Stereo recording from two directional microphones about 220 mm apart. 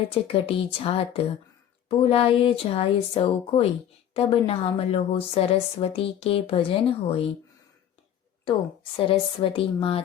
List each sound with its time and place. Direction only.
0.1 s speech: 25° left (ahead or behind)
8.4 s speech: 25° left (ahead or behind)